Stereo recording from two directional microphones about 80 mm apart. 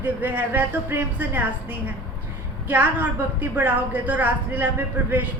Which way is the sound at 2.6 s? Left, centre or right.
Right.